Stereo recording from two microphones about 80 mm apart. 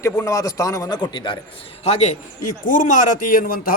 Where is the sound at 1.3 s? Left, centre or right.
Left.